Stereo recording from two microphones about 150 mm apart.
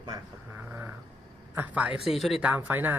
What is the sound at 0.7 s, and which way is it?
Speech, 10° right (ahead or behind).